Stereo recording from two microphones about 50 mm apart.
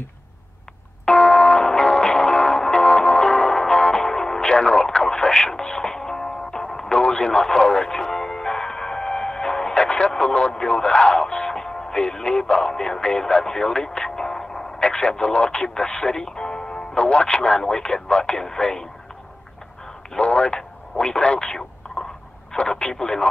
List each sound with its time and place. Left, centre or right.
1.0 s music: centre
9.8 s speech: left
20.2 s speech: left
21.8 s a sound: centre
22.5 s telephone: centre